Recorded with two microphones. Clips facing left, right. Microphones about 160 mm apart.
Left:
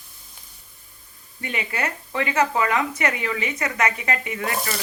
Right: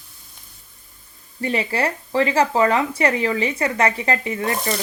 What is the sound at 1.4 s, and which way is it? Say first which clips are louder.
Speech: right 6 dB; 35° right (ahead or behind).